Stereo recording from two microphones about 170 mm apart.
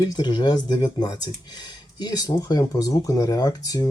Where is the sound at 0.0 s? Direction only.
25° left (ahead or behind).